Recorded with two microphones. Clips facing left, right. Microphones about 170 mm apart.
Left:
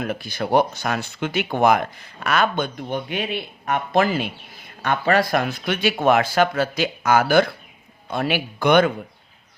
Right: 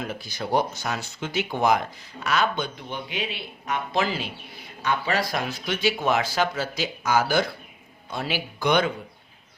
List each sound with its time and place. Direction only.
0.0 s speech: 60° left (ahead or behind)